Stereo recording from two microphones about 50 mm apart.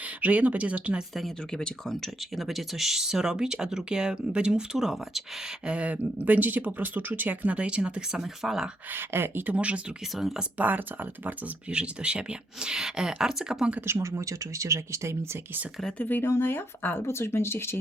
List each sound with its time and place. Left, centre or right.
0.2 s speech: right
1.5 s speech: centre
5.6 s speech: right
8.2 s speech: centre
8.9 s speech: right
9.5 s speech: right
11.7 s speech: right
14.0 s speech: right
16.0 s speech: left
16.2 s speech: left
17.1 s speech: left